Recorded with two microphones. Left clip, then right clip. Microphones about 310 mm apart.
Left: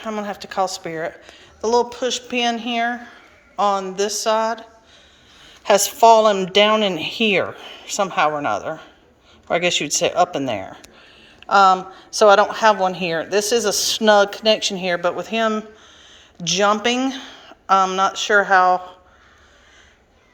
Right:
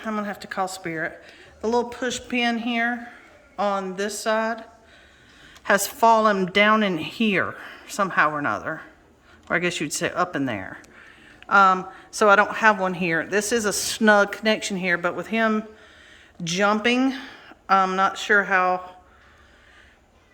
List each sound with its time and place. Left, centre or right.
0.0 s speech: centre
5.5 s a sound: centre
6.0 s speech: centre
8.6 s a man's voice: right
9.5 s speech: centre